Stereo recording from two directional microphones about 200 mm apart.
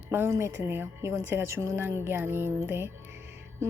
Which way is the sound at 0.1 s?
10° right (ahead or behind).